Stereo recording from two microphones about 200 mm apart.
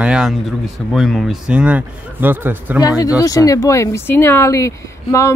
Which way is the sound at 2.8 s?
20° left (ahead or behind).